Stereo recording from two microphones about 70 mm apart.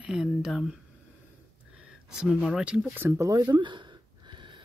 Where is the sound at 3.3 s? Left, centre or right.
Right.